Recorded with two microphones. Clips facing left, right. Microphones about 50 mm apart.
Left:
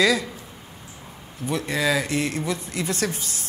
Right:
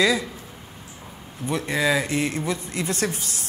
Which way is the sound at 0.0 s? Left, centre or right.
Centre.